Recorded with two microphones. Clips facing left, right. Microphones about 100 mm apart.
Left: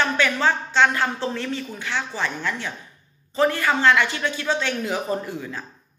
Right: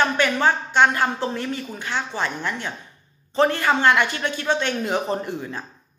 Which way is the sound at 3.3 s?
30° right (ahead or behind).